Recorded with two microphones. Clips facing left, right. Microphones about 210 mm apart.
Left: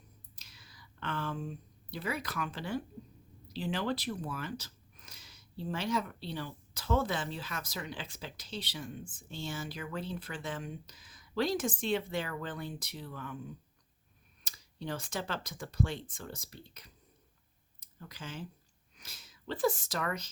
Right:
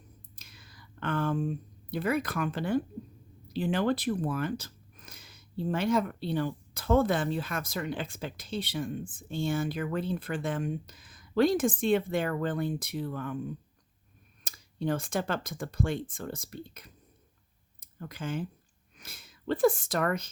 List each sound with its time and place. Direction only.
0.3 s a sound: 55° right (ahead or behind)
3.5 s speech: 50° right (ahead or behind)
14.4 s speech: 50° right (ahead or behind)